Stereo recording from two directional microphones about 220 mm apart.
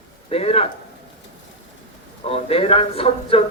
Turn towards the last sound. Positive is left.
turn(degrees=25)  # may be behind; listen again after turning